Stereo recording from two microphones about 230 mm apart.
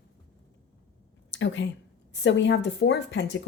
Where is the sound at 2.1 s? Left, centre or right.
Left.